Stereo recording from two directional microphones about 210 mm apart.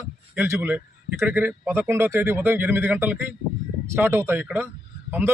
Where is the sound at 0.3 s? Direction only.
10° right (ahead or behind).